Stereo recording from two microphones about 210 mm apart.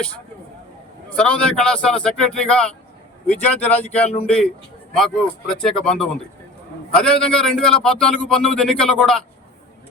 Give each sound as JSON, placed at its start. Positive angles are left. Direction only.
{"t": 1.1, "sound": "a man's voice", "side_deg": 5}